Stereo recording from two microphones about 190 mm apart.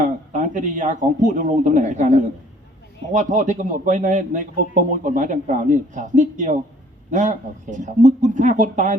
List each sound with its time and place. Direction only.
0.0 s a man's voice: 40° right (ahead or behind)